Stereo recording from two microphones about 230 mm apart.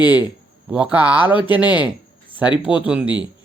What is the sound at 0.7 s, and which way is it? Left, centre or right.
A man's voice, centre.